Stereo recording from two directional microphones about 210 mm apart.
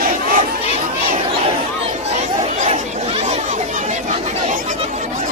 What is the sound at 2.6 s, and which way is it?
Chatter, 30° right (ahead or behind).